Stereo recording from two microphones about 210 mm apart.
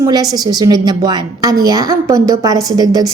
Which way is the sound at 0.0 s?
20° right (ahead or behind).